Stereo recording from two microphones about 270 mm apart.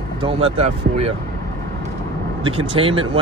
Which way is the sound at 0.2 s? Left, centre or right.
Right.